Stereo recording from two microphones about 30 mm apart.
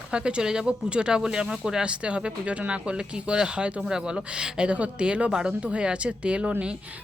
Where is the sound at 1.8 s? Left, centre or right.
Right.